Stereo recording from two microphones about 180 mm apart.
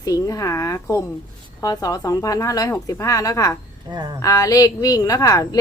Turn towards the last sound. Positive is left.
turn(degrees=20)  # may be behind; listen again after turning